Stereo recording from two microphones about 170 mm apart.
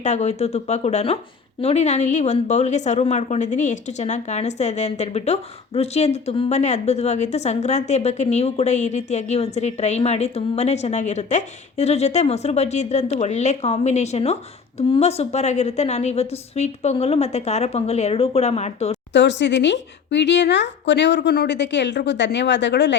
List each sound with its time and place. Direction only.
0.0 s speech: 40° left (ahead or behind)
19.1 s speech: 90° left